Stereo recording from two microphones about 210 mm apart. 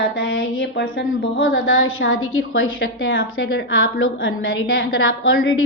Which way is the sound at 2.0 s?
75° left (ahead or behind).